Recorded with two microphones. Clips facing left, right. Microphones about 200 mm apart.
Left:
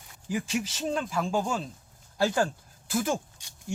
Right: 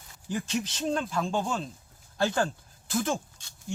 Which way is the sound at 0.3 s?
10° left (ahead or behind).